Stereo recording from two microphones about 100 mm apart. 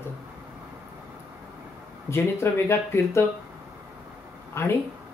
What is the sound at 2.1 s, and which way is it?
Speech, 25° left (ahead or behind).